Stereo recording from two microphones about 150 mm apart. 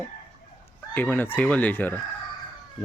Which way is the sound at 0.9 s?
10° left (ahead or behind).